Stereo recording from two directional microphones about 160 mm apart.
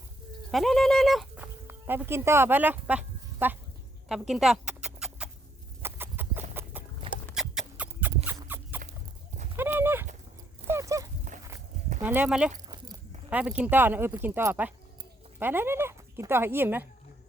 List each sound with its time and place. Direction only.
0.5 s speech: centre (ahead or behind)
1.6 s speech: 15° right (ahead or behind)
4.1 s rodents: 5° right (ahead or behind)
6.5 s horse: 10° right (ahead or behind)
7.4 s rodents: centre (ahead or behind)
7.8 s a sound: 10° right (ahead or behind)
9.6 s clip-clop: 15° right (ahead or behind)
10.7 s dog: 20° right (ahead or behind)
12.0 s speech: 10° right (ahead or behind)
12.6 s a sound: 25° right (ahead or behind)
13.3 s speech: 5° right (ahead or behind)